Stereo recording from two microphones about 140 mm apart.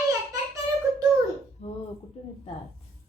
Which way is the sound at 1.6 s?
50° left (ahead or behind).